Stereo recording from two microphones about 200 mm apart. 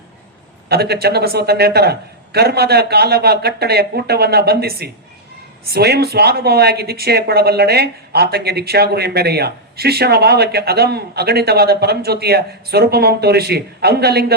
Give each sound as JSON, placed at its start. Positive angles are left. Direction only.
{"t": 0.7, "sound": "speech", "side_deg": -55}